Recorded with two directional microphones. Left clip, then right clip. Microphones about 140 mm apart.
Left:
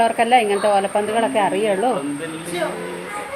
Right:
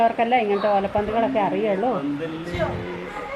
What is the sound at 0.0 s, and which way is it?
A woman's voice, 20° left (ahead or behind).